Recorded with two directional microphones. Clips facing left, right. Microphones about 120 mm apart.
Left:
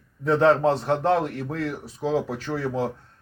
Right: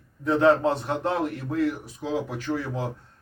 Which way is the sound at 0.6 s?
35° left (ahead or behind).